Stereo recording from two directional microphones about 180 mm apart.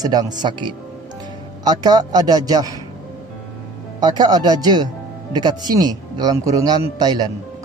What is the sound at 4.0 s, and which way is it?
Speech, 20° right (ahead or behind).